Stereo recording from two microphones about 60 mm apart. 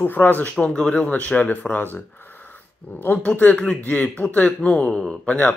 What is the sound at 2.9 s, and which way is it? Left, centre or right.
Speech, left.